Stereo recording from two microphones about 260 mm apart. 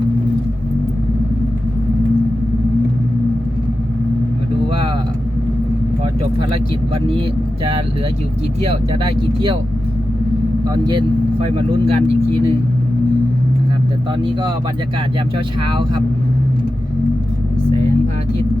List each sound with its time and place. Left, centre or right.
8.6 s speech: right
10.8 s speech: centre
12.0 s speech: right